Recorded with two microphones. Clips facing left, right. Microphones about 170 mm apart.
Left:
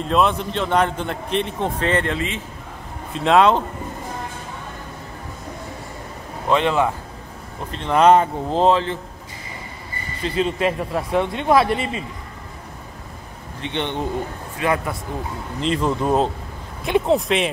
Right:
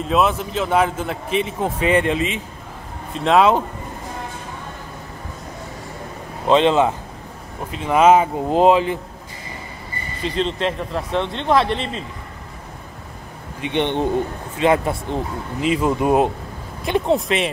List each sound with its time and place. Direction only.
0.0 s a man's voice: 5° right (ahead or behind)
3.1 s a man's voice: centre (ahead or behind)
6.4 s speech: 20° right (ahead or behind)
7.7 s speech: 5° right (ahead or behind)
10.2 s speech: 5° left (ahead or behind)
13.6 s speech: 15° right (ahead or behind)
15.6 s speech: 10° right (ahead or behind)
16.8 s a man's voice: centre (ahead or behind)